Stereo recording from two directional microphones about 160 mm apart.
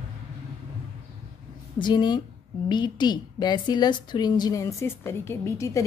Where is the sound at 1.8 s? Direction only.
25° left (ahead or behind).